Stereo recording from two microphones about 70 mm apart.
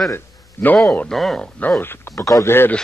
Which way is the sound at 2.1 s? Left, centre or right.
Left.